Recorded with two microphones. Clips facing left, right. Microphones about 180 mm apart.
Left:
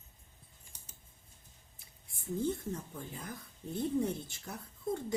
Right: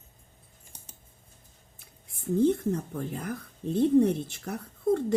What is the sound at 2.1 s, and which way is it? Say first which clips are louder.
Speech: right 11 dB; 90° right.